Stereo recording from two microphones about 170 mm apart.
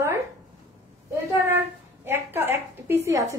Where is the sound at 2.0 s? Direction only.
10° right (ahead or behind).